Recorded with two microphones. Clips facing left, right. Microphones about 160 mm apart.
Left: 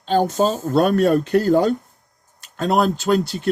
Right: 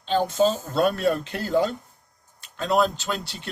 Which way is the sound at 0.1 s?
50° left (ahead or behind).